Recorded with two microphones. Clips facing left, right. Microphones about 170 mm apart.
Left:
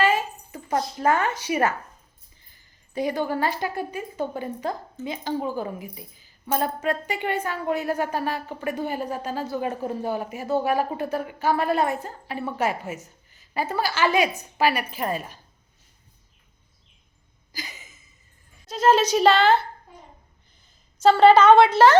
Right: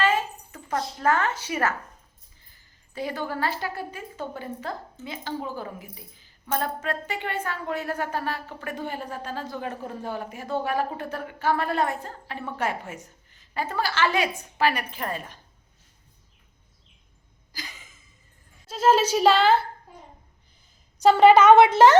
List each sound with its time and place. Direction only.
0.0 s a sound: 10° left (ahead or behind)
0.7 s a woman's voice: 20° left (ahead or behind)
2.9 s a woman's voice: 15° left (ahead or behind)
17.5 s a sound: 10° left (ahead or behind)
18.6 s speech: 5° right (ahead or behind)
21.0 s speech: 15° right (ahead or behind)